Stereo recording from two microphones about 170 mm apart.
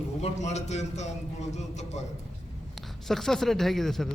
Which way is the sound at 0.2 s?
40° left (ahead or behind).